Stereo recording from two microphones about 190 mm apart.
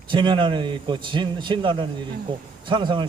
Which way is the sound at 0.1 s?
25° right (ahead or behind).